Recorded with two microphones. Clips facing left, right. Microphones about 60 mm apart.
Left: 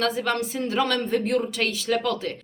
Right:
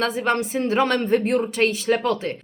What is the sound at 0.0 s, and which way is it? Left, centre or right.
Speech, right.